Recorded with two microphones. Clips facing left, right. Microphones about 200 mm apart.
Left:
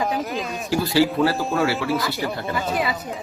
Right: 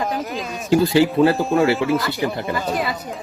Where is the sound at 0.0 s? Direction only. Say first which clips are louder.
Even; centre (ahead or behind).